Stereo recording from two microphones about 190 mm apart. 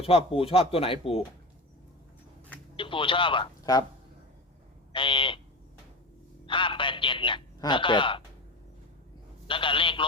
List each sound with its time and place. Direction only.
0.0 s speech: 30° left (ahead or behind)
2.7 s speech: 25° left (ahead or behind)
4.9 s frog: 25° left (ahead or behind)
6.4 s a man's voice: 25° left (ahead or behind)
9.5 s a man's voice: 25° left (ahead or behind)